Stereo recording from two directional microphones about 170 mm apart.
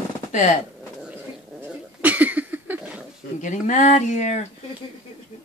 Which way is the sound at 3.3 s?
45° left (ahead or behind).